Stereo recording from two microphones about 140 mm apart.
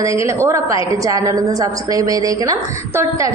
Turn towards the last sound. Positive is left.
turn(degrees=-20)  # may be behind; listen again after turning